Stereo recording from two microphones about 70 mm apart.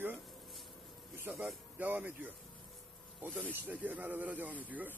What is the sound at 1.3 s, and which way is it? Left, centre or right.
Speech, centre.